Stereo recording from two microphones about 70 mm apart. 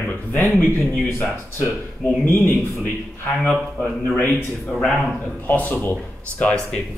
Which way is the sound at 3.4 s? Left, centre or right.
Centre.